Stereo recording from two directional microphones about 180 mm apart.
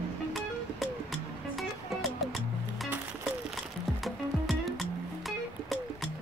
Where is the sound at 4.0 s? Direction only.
Centre (ahead or behind).